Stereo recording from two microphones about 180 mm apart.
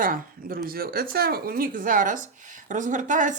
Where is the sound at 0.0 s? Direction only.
50° right (ahead or behind).